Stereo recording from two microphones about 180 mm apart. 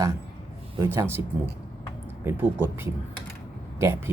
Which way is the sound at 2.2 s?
10° right (ahead or behind).